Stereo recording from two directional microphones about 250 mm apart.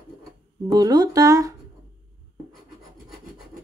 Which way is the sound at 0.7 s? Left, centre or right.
Centre.